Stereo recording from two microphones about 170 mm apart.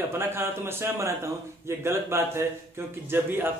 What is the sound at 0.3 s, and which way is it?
Speech, 15° right (ahead or behind).